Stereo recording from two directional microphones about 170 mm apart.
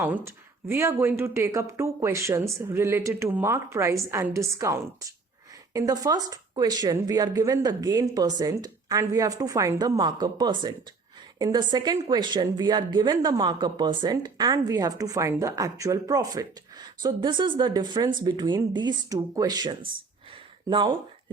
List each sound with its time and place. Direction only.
0.0 s speech: 10° right (ahead or behind); by 20.9 s 30° right (ahead or behind)